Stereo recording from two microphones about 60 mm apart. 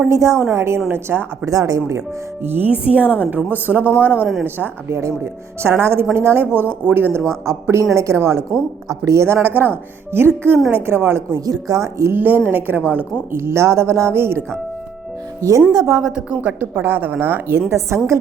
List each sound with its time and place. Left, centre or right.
0.0 s speech: right
1.5 s speech: right
2.4 s speech: right
2.6 s a woman's voice: right
4.4 s speech: right
4.9 s speech: right
7.3 s speech: right
11.3 s a woman's voice: right
12.1 s speech: right
13.3 s speech: right
15.4 s speech: right
16.0 s a woman's voice: centre
16.4 s speech: right
17.7 s speech: right